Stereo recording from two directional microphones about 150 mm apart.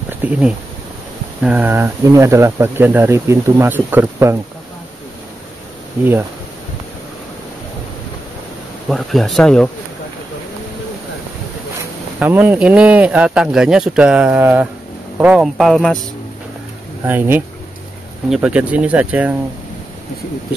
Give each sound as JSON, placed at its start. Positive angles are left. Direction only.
{"t": 0.2, "sound": "speech", "side_deg": -5}
{"t": 8.8, "sound": "speech", "side_deg": 0}
{"t": 12.2, "sound": "speech", "side_deg": -10}
{"t": 17.0, "sound": "speech", "side_deg": -15}